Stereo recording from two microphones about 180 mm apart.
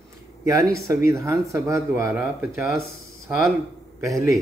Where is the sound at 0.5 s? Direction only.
20° right (ahead or behind).